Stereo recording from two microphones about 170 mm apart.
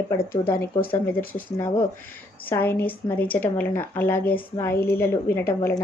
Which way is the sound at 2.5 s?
10° left (ahead or behind).